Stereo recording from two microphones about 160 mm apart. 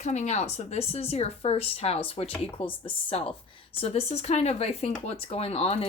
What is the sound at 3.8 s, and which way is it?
A woman's voice, 40° left (ahead or behind).